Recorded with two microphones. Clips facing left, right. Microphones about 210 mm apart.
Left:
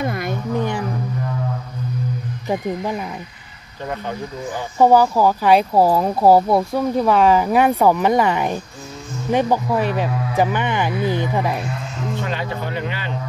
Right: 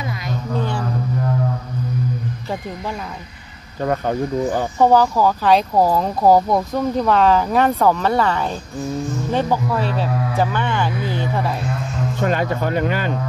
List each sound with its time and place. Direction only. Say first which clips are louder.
4.7 s speech: left 2 dB; 10° left (ahead or behind)
12.2 s speech: right 9 dB; 45° right (ahead or behind)